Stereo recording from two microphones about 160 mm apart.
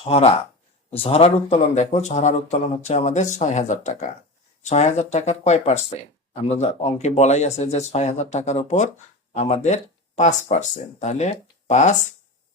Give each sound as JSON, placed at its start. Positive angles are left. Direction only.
{"t": 0.0, "sound": "speech", "side_deg": 40}